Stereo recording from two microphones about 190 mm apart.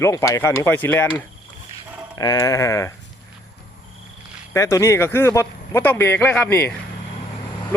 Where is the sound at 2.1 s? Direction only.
20° left (ahead or behind).